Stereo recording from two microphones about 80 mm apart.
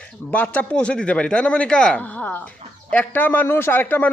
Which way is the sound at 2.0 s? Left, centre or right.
Left.